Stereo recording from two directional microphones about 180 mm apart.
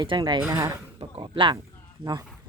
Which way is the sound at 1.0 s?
25° right (ahead or behind).